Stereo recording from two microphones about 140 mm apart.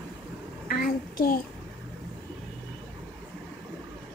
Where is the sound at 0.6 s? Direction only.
90° left.